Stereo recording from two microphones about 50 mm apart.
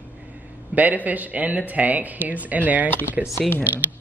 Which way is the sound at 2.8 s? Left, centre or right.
Left.